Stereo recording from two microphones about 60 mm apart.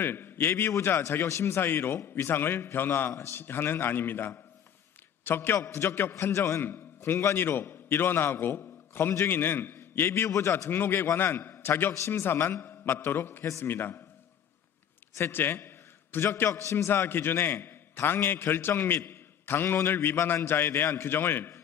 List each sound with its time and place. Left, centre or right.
0.0 s a man's voice: left
5.6 s a man's voice: left
6.1 s a man's voice: left
6.6 s a man's voice: left
13.7 s a man's voice: left
15.1 s a man's voice: left
16.4 s a man's voice: left